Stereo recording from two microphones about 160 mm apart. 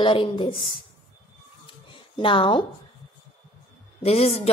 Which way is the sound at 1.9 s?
30° left (ahead or behind).